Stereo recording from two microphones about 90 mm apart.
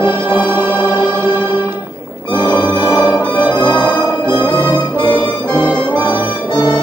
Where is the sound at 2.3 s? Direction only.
60° left (ahead or behind).